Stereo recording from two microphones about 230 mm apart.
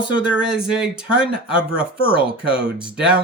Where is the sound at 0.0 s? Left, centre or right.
Centre.